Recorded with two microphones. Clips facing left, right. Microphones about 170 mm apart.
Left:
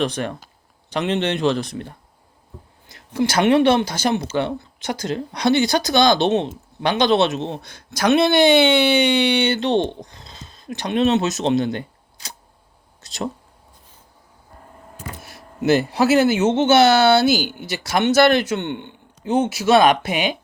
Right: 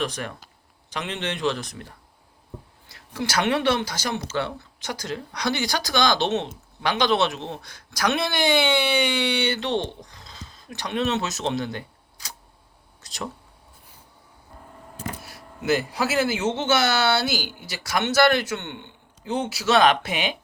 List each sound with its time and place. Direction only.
0.0 s speech: 30° left (ahead or behind)
2.9 s a sound: 20° left (ahead or behind)
3.2 s speech: 20° left (ahead or behind)
10.1 s a sound: 25° left (ahead or behind)
10.8 s speech: 20° left (ahead or behind)
15.2 s speech: 25° left (ahead or behind)